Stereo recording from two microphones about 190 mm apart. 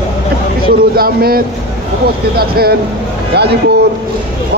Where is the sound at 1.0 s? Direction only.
50° right (ahead or behind).